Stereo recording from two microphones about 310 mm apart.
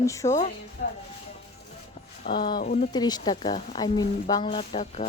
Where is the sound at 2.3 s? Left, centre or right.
Centre.